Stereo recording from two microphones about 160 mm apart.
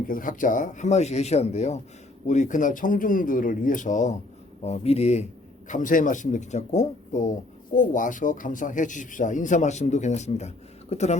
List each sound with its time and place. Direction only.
0.1 s speech: 60° left (ahead or behind)
4.6 s speech: 40° left (ahead or behind)
5.6 s speech: 55° left (ahead or behind)